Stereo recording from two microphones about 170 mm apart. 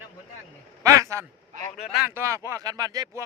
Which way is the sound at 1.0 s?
15° right (ahead or behind).